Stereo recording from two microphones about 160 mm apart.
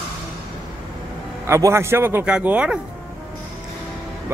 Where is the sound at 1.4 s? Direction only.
15° right (ahead or behind).